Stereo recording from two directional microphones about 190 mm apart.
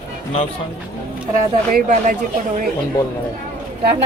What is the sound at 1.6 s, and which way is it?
Speech, 45° right (ahead or behind).